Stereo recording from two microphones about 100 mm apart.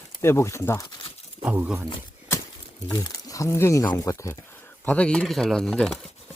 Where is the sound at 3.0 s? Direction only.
35° left (ahead or behind).